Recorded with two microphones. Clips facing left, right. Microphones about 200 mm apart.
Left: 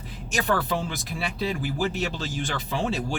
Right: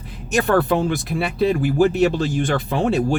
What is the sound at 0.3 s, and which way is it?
Speech, 55° right (ahead or behind).